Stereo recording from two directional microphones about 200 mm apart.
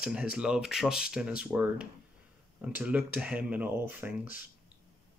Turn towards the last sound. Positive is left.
turn(degrees=-10)  # may be behind; listen again after turning